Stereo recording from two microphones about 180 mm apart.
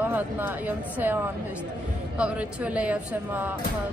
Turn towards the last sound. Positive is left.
turn(degrees=-10)  # may be behind; listen again after turning